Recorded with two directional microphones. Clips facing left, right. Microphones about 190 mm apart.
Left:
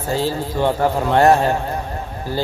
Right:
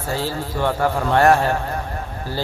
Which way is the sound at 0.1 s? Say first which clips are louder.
Left 4 dB; 20° left (ahead or behind).